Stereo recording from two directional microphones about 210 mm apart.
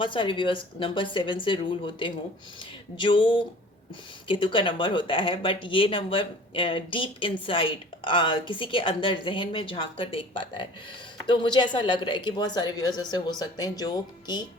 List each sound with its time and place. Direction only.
0.0 s a woman's voice: 25° left (ahead or behind)